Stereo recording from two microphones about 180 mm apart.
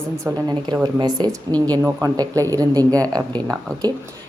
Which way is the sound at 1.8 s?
10° right (ahead or behind).